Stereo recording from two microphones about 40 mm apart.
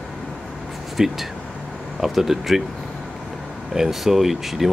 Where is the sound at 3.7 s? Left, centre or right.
Centre.